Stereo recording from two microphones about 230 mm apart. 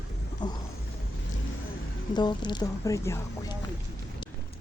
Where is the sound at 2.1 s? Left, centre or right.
Centre.